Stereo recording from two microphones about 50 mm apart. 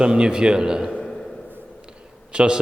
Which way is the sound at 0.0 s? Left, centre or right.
Centre.